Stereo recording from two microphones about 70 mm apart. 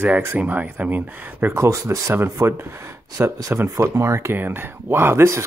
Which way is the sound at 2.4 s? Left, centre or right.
Right.